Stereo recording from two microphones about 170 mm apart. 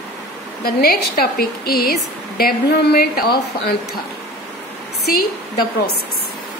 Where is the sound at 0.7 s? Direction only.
60° left (ahead or behind).